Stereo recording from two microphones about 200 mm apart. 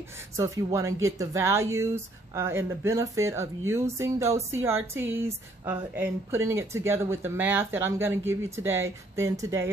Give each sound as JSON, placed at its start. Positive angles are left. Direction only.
{"t": 0.4, "sound": "speech", "side_deg": -15}